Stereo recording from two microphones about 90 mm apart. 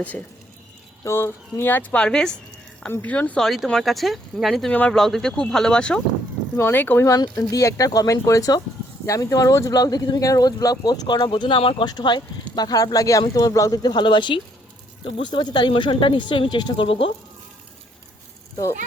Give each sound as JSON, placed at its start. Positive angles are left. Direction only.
{"t": 1.0, "sound": "speech", "side_deg": 25}
{"t": 2.9, "sound": "speech", "side_deg": 20}
{"t": 3.4, "sound": "speech", "side_deg": 0}
{"t": 4.7, "sound": "speech", "side_deg": 15}
{"t": 4.9, "sound": "speech", "side_deg": 5}
{"t": 6.6, "sound": "speech", "side_deg": 25}
{"t": 7.3, "sound": "speech", "side_deg": 35}
{"t": 11.9, "sound": "speech", "side_deg": 55}
{"t": 13.8, "sound": "speech", "side_deg": 60}